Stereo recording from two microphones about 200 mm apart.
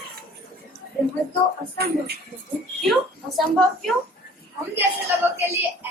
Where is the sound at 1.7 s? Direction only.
50° right (ahead or behind).